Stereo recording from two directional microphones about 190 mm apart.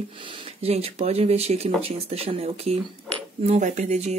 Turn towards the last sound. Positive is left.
turn(degrees=-35)  # may be behind; listen again after turning